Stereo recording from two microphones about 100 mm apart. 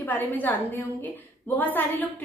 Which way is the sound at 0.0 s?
15° left (ahead or behind).